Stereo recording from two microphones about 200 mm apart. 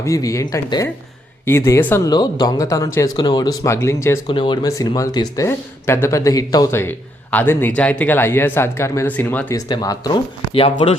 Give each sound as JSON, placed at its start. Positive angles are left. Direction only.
{"t": 0.0, "sound": "speech", "side_deg": 15}
{"t": 4.3, "sound": "speech", "side_deg": 25}
{"t": 9.6, "sound": "speech", "side_deg": 20}